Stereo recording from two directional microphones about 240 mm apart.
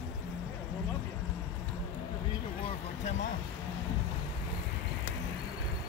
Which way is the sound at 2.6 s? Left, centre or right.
Left.